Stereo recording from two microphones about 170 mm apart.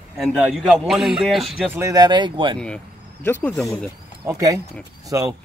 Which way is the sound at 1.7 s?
20° right (ahead or behind).